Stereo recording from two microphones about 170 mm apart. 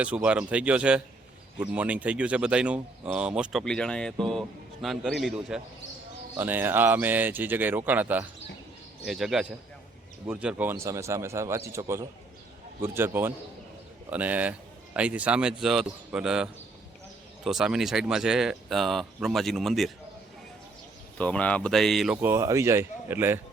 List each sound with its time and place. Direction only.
0.0 s speech: 10° right (ahead or behind)
21.2 s speech: 10° left (ahead or behind)
22.2 s speech: 15° right (ahead or behind)